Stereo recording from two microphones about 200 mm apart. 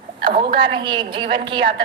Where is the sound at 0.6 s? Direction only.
25° right (ahead or behind).